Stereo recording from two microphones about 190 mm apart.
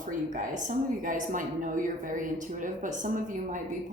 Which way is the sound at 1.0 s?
45° right (ahead or behind).